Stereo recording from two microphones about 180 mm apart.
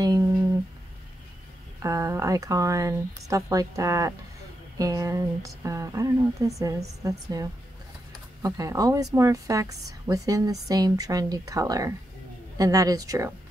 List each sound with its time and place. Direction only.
1.8 s a woman's voice: 15° right (ahead or behind)